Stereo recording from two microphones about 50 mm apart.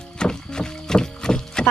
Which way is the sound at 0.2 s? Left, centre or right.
Centre.